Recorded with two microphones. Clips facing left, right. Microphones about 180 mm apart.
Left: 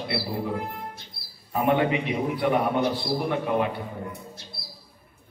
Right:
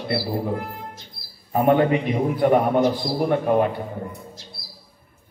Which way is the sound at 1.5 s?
40° right (ahead or behind).